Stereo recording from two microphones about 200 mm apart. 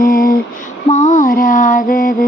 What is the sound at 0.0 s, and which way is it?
Female singing, 45° left (ahead or behind).